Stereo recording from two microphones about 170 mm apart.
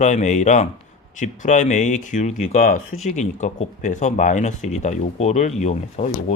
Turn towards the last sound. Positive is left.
turn(degrees=40)  # may be behind; listen again after turning